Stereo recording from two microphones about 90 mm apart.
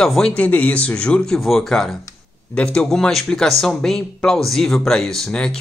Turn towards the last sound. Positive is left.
turn(degrees=5)  # may be behind; listen again after turning